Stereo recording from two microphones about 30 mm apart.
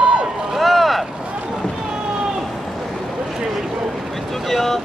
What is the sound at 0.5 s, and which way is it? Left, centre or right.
Boat, centre.